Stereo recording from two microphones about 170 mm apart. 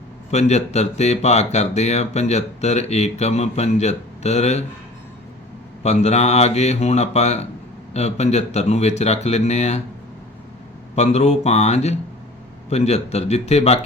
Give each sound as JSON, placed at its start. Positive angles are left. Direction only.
{"t": 0.3, "sound": "speech", "side_deg": 40}
{"t": 5.8, "sound": "speech", "side_deg": 40}
{"t": 10.9, "sound": "speech", "side_deg": 40}